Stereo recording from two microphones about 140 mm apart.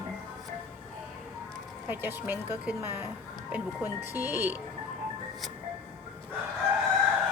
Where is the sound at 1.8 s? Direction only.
15° right (ahead or behind).